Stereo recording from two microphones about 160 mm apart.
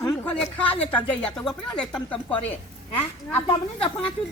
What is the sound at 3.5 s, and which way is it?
Speech, 35° left (ahead or behind).